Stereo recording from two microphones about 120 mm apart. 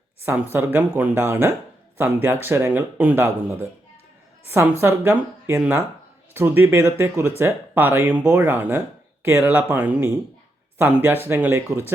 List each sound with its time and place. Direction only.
0.3 s speech: 20° right (ahead or behind)
4.8 s speech: 20° right (ahead or behind)